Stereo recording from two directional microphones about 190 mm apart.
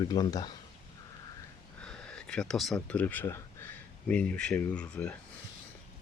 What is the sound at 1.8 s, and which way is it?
Speech, 5° left (ahead or behind).